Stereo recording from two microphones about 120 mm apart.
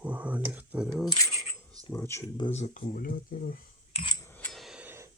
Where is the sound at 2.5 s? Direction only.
70° left (ahead or behind).